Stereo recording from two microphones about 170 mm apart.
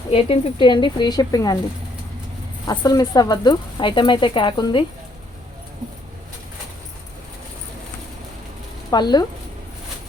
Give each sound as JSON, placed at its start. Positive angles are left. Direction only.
{"t": 0.1, "sound": "speech", "side_deg": 35}
{"t": 2.6, "sound": "speech", "side_deg": 25}
{"t": 8.9, "sound": "speech", "side_deg": 25}